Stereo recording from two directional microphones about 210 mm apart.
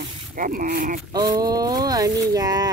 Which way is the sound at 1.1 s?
20° right (ahead or behind).